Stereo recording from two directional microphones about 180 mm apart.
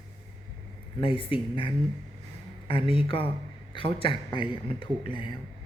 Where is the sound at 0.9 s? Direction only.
30° left (ahead or behind).